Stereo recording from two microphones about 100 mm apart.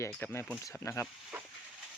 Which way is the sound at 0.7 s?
30° left (ahead or behind).